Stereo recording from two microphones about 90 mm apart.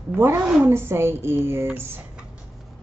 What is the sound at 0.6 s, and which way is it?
A woman's voice, 25° right (ahead or behind).